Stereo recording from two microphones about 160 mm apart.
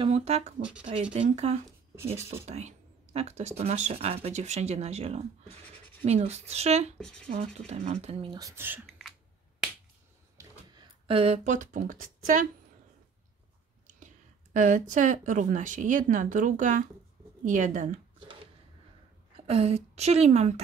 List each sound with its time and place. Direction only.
0.0 s speech: 40° right (ahead or behind)
7.0 s speech: 5° left (ahead or behind)
7.2 s speech: 40° right (ahead or behind)
8.4 s speech: 15° right (ahead or behind)
8.8 s a sound: centre (ahead or behind)
10.3 s a sound: 30° right (ahead or behind); by 12.4 s 55° right (ahead or behind)
14.5 s speech: 50° right (ahead or behind)
19.3 s a woman's voice: 40° right (ahead or behind)